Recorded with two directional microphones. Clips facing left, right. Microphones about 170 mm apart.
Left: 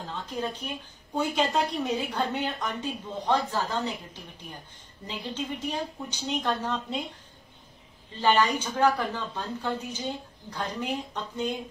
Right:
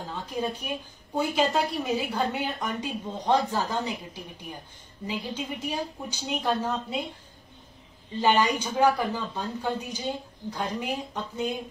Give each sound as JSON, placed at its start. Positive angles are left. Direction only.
{"t": 0.1, "sound": "a woman's voice", "side_deg": -10}
{"t": 8.2, "sound": "a woman's voice", "side_deg": -15}